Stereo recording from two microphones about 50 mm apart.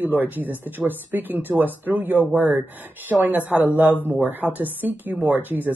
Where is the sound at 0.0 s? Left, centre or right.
Right.